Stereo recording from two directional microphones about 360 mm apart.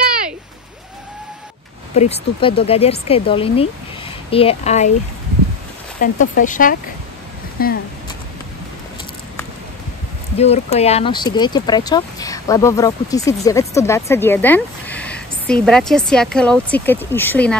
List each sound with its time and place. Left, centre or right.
2.0 s speech: centre
5.9 s speech: left
10.4 s speech: centre